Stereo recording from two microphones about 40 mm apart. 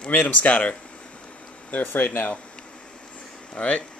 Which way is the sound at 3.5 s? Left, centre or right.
Left.